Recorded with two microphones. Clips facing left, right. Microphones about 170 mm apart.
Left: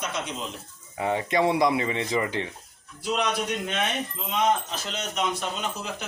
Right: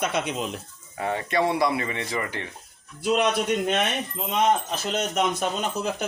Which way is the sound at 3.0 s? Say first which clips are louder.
Right 4 dB; 55° right (ahead or behind).